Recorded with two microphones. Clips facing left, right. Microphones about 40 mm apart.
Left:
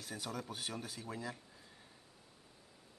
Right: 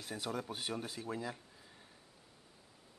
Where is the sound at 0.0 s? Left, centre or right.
Centre.